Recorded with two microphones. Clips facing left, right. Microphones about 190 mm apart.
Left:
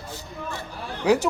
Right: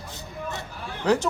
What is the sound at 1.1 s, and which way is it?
Speech, 10° left (ahead or behind).